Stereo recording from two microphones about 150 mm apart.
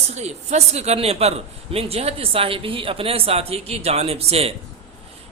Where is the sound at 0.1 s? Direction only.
45° right (ahead or behind).